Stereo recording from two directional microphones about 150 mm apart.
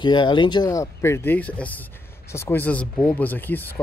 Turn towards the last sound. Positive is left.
turn(degrees=10)  # may be behind; listen again after turning